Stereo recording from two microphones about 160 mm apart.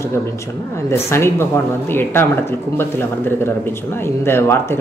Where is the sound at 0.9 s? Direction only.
15° left (ahead or behind).